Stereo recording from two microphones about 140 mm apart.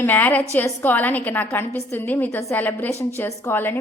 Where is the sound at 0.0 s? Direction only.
15° left (ahead or behind).